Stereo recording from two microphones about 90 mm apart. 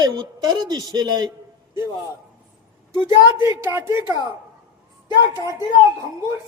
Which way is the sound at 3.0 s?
25° right (ahead or behind).